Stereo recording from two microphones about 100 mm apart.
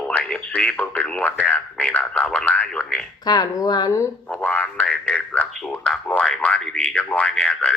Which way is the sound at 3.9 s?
30° left (ahead or behind).